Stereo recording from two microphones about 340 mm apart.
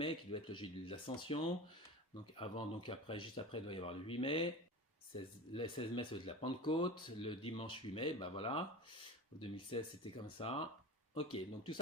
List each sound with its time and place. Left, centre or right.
0.0 s speech: centre